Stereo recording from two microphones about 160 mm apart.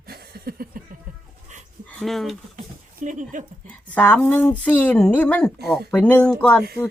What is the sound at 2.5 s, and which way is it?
Speech, 55° right (ahead or behind).